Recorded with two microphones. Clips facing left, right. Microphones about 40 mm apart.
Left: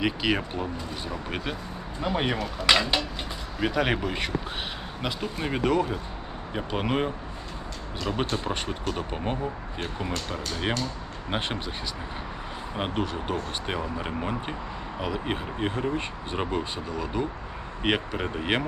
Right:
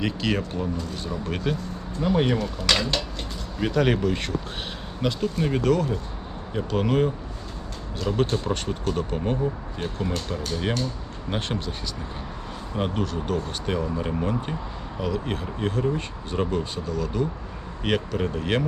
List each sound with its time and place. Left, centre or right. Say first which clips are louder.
0.0 s speech: even; centre
12.7 s speech: right 2 dB; centre